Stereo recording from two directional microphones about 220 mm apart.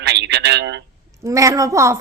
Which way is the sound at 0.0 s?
50° right (ahead or behind).